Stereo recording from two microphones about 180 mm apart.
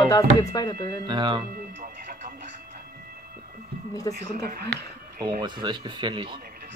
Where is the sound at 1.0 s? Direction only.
25° right (ahead or behind).